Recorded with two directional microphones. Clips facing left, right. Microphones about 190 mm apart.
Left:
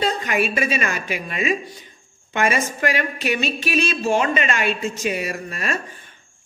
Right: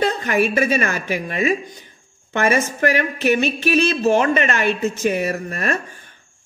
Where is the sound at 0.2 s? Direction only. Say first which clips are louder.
Right 4 dB; 45° right (ahead or behind).